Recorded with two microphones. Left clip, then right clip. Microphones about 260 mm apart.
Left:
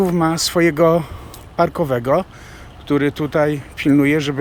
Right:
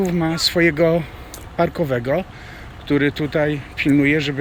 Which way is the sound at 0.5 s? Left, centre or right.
Centre.